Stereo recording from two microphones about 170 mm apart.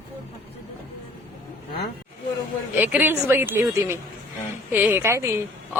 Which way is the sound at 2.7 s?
10° right (ahead or behind).